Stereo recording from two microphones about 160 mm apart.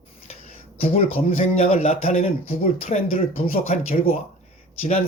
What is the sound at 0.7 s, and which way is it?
Speech, 35° left (ahead or behind).